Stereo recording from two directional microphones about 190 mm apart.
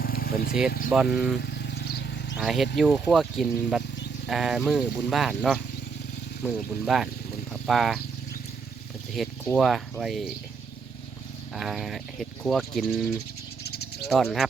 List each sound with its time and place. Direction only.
0.0 s vehicle: 50° left (ahead or behind)
0.9 s speech: centre (ahead or behind)
1.4 s vehicle: 60° left (ahead or behind)
2.4 s speech: centre (ahead or behind)
9.1 s speech: centre (ahead or behind)
11.5 s speech: centre (ahead or behind)
13.7 s a sound: 60° left (ahead or behind)
14.1 s speech: centre (ahead or behind)